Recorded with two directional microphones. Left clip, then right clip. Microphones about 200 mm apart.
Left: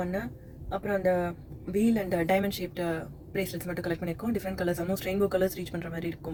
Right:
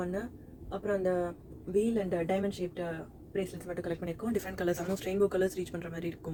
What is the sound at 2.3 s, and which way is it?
A woman's voice, 10° left (ahead or behind).